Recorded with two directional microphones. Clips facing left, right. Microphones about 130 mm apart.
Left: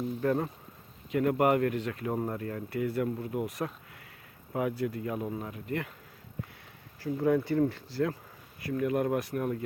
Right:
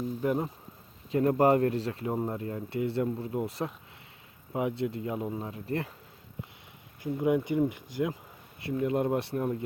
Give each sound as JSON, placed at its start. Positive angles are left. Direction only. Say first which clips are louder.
{"t": 0.2, "sound": "speech", "louder": "even", "side_deg": -15}
{"t": 1.1, "sound": "speech", "louder": "right 2 dB", "side_deg": -30}
{"t": 7.0, "sound": "speech", "louder": "even", "side_deg": -15}